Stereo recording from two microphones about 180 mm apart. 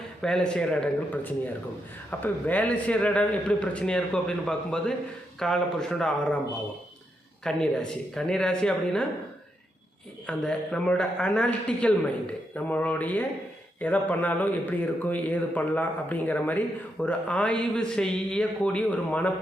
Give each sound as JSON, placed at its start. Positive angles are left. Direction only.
{"t": 0.2, "sound": "a man's voice", "side_deg": 5}
{"t": 7.4, "sound": "speech", "side_deg": 5}
{"t": 10.2, "sound": "a man's voice", "side_deg": 5}